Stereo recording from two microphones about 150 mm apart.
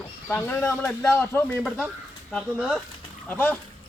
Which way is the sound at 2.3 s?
Centre (ahead or behind).